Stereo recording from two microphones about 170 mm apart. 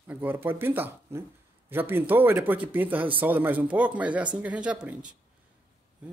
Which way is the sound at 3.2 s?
10° right (ahead or behind).